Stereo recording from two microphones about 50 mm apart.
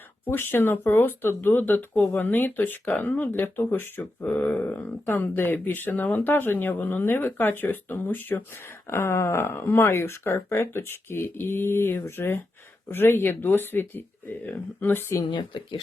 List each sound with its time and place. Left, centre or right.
0.3 s speech: left
4.2 s speech: left
5.1 s speech: left
8.9 s speech: left